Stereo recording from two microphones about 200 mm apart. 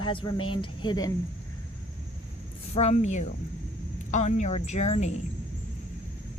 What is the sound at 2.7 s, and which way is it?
A woman's voice, 30° left (ahead or behind).